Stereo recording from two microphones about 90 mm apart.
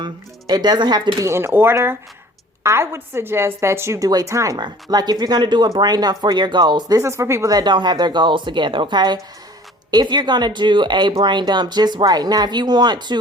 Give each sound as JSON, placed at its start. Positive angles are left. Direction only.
{"t": 0.0, "sound": "speech", "side_deg": -50}
{"t": 1.2, "sound": "a woman's voice", "side_deg": -30}
{"t": 4.5, "sound": "speech", "side_deg": -50}
{"t": 7.1, "sound": "speech", "side_deg": -30}
{"t": 7.5, "sound": "a woman's voice", "side_deg": -55}